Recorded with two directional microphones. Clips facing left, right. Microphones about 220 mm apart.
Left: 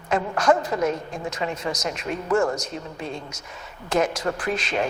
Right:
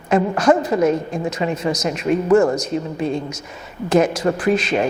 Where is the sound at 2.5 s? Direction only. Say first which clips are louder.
Right 10 dB; 10° right (ahead or behind).